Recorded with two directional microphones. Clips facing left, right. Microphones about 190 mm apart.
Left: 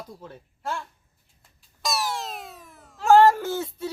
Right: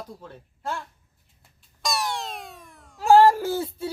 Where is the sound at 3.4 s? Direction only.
30° right (ahead or behind).